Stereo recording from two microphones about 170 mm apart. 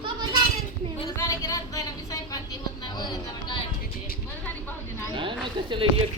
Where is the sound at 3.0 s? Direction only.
25° left (ahead or behind).